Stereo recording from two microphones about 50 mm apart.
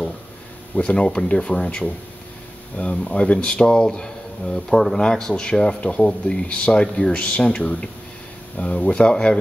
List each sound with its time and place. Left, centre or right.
0.7 s speech: left